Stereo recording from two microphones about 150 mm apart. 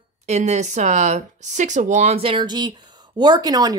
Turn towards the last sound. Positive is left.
turn(degrees=-25)  # may be behind; listen again after turning